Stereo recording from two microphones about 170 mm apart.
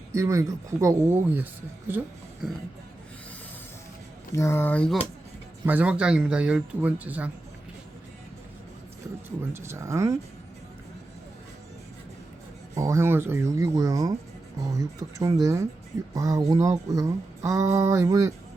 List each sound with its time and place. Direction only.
0.1 s speech: 15° right (ahead or behind)
4.4 s speech: 15° left (ahead or behind)
5.6 s speech: 10° right (ahead or behind)
9.5 s speech: 15° right (ahead or behind)
12.7 s speech: 20° right (ahead or behind)